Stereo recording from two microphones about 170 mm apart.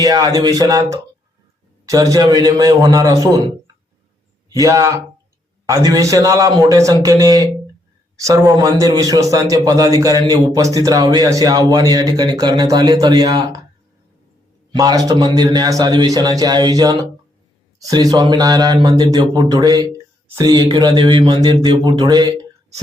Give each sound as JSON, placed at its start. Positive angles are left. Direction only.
{"t": 0.0, "sound": "a man's voice", "side_deg": -25}
{"t": 4.4, "sound": "a man's voice", "side_deg": -20}
{"t": 14.7, "sound": "a man's voice", "side_deg": -20}